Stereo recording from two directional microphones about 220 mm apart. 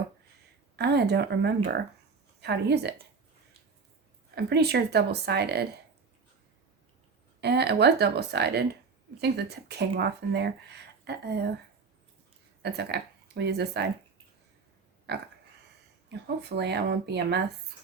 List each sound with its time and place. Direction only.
0.8 s speech: 50° right (ahead or behind)
4.4 s speech: 50° right (ahead or behind)
7.4 s speech: 50° right (ahead or behind)
12.6 s speech: 50° right (ahead or behind)
15.1 s a sound: 50° right (ahead or behind)
16.0 s speech: 50° right (ahead or behind)